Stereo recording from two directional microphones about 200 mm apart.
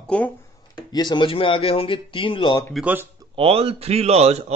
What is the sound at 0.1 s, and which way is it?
Speech, 5° left (ahead or behind).